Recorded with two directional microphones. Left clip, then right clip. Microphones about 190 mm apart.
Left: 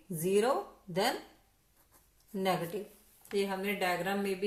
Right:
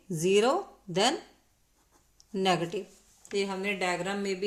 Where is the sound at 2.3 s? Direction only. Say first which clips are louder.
Right 5 dB; 45° right (ahead or behind).